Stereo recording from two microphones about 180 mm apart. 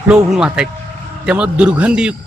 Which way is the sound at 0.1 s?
5° right (ahead or behind).